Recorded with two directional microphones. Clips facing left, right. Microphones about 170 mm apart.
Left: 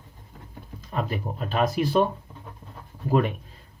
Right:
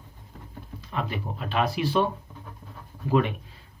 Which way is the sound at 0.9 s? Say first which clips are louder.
Left 2 dB; 40° left (ahead or behind).